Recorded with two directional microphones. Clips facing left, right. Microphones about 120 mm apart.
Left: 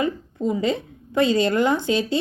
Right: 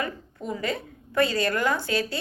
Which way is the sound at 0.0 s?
20° left (ahead or behind).